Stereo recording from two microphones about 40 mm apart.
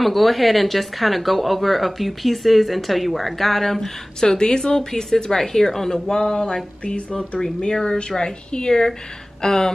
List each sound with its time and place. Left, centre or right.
0.0 s speech: centre
4.2 s a woman's voice: centre